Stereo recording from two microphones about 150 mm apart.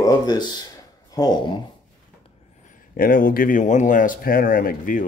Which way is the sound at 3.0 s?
70° left (ahead or behind).